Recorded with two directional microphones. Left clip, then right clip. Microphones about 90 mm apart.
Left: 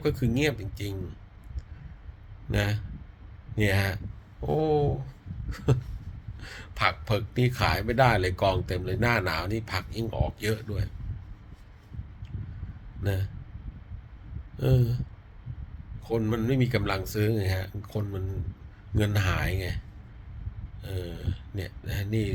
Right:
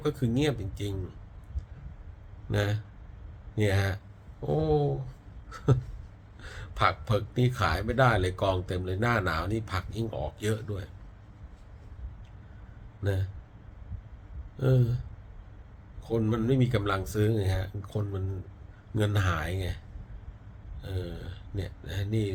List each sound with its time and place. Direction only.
0.0 s speech: 30° right (ahead or behind)
2.5 s speech: 25° right (ahead or behind)
5.5 s a sound: 30° right (ahead or behind)
6.4 s speech: 25° right (ahead or behind)
13.0 s a man's voice: 25° right (ahead or behind)
14.6 s speech: 25° right (ahead or behind)
16.2 s speech: 35° right (ahead or behind)
20.8 s speech: 25° right (ahead or behind)